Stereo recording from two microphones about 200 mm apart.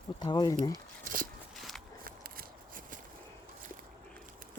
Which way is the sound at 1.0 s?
45° right (ahead or behind).